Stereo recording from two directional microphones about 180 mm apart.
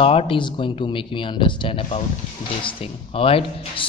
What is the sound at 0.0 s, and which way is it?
A man's voice, 30° left (ahead or behind).